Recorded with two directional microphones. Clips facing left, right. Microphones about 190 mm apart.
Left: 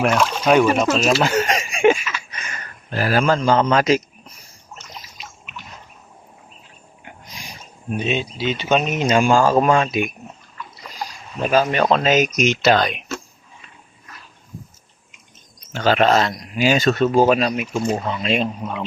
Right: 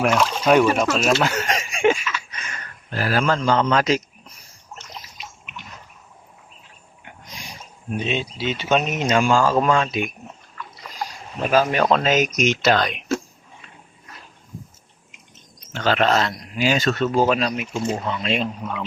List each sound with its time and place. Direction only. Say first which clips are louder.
0.0 s speech: left 1 dB; centre (ahead or behind)
1.5 s a sound: left 2 dB; 10° left (ahead or behind)
2.9 s speech: left 3 dB; 10° left (ahead or behind)
8.0 s speech: left 3 dB; 5° left (ahead or behind)
9.3 s speech: left 3 dB; 45° left (ahead or behind)
9.8 s speech: left 3 dB; 10° left (ahead or behind)
11.4 s speech: left 1 dB; centre (ahead or behind)
15.7 s speech: left 3 dB; 10° left (ahead or behind)
18.6 s speech: left 2 dB; 25° left (ahead or behind)